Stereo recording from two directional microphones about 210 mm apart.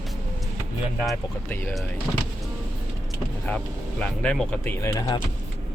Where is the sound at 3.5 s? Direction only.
5° left (ahead or behind).